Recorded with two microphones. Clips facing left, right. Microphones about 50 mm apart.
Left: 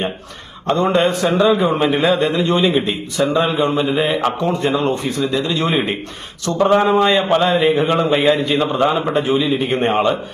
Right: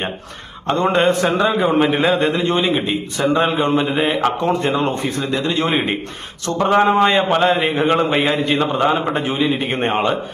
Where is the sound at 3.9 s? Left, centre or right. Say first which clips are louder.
Even; right.